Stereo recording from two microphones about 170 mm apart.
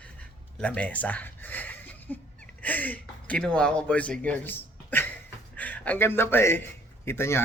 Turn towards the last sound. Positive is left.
turn(degrees=15)  # may be behind; listen again after turning